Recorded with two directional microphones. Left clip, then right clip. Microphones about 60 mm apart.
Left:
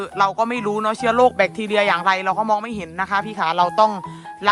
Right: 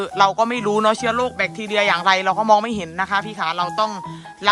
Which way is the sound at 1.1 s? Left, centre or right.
Left.